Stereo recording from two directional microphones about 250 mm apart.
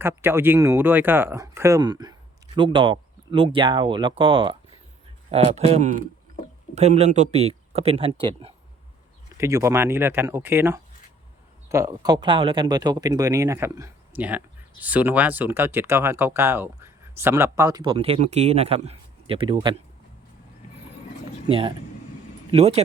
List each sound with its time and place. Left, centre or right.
0.0 s speech: centre
9.4 s speech: centre
21.4 s speech: right